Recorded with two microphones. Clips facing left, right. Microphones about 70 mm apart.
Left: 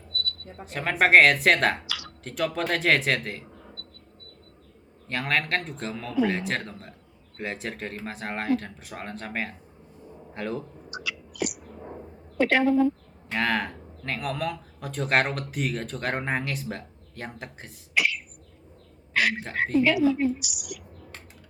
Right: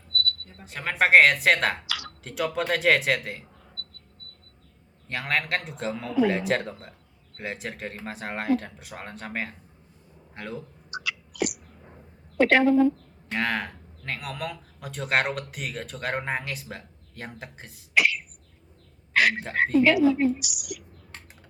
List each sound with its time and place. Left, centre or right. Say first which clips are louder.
0.6 s speech: left 1 dB; centre
5.0 s a man's voice: left 1 dB; centre
10.9 s a sound: right 3 dB; right
12.4 s a woman's voice: right 2 dB; right
13.3 s speech: left 2 dB; centre
17.9 s beatboxing: right 3 dB; right
19.1 s a sound: right 3 dB; right
19.6 s a woman's voice: right 2 dB; right